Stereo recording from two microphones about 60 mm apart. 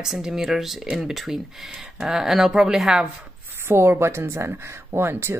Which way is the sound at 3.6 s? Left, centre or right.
Right.